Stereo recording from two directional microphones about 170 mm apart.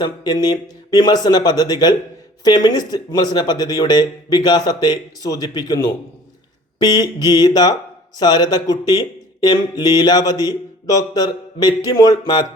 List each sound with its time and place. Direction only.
0.0 s speech: 25° left (ahead or behind)